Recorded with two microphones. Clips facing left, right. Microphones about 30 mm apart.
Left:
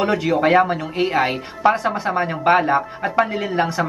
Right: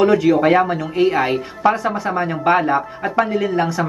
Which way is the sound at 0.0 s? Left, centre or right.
Centre.